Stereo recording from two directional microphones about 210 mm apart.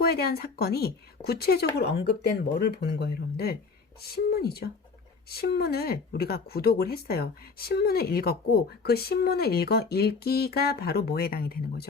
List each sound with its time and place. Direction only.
0.0 s speech: 45° left (ahead or behind)